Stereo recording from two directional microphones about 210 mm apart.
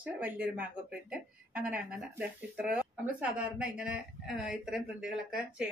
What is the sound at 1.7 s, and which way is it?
Speech, 5° right (ahead or behind).